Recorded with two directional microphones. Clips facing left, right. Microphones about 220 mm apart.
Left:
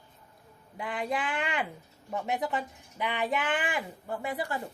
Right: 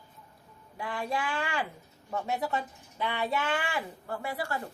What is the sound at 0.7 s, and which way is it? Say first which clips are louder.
A woman's voice: left 1 dB; 20° left (ahead or behind).